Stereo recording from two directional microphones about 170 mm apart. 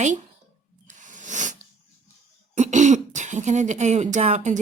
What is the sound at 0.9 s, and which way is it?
Snake, 45° right (ahead or behind).